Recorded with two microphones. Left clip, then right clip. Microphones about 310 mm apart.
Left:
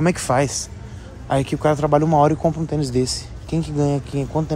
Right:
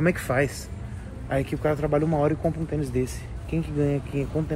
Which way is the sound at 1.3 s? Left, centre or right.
Left.